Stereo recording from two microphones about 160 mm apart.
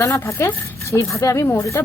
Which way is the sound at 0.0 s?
15° left (ahead or behind).